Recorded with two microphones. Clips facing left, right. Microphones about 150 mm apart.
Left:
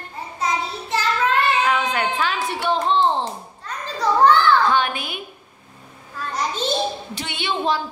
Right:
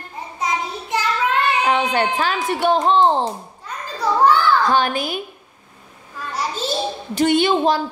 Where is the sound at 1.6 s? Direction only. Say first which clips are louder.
Right 3 dB; 30° right (ahead or behind).